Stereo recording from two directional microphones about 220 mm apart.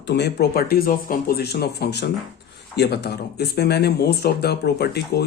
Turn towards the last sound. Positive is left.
turn(degrees=45)  # may be behind; listen again after turning